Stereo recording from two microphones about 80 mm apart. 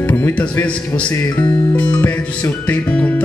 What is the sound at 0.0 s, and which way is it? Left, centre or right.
Speech, centre.